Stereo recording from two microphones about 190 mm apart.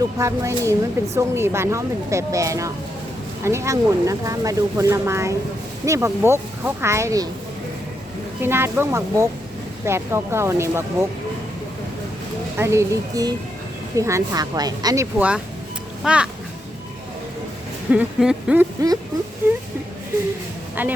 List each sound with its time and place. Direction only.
0.2 s speech: 15° right (ahead or behind)
8.4 s speech: 10° right (ahead or behind)
12.5 s a woman's voice: 15° right (ahead or behind)
16.0 s speech: 5° right (ahead or behind)
17.9 s speech: 5° right (ahead or behind)
20.8 s speech: 10° right (ahead or behind)